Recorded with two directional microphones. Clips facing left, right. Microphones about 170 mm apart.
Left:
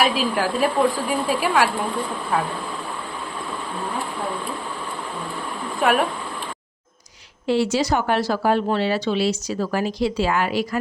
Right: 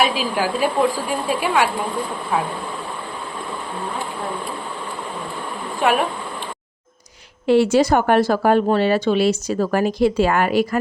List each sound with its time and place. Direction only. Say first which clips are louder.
0.0 s a woman's voice: right 1 dB; centre (ahead or behind)
5.8 s a woman's voice: right 1 dB; centre (ahead or behind)
7.4 s speech: right 5 dB; 55° right (ahead or behind)